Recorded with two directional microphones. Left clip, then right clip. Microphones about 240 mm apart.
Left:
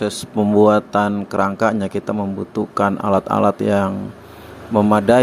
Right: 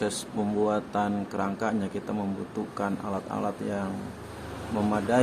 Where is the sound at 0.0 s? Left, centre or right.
Left.